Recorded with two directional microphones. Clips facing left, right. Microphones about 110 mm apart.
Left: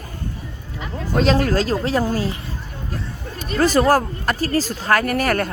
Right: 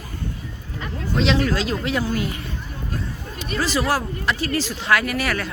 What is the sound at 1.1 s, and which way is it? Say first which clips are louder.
Speech: left 3 dB; 45° left (ahead or behind).